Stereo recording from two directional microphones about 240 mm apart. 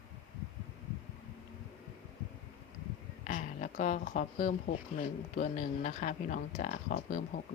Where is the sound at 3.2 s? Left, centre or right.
Left.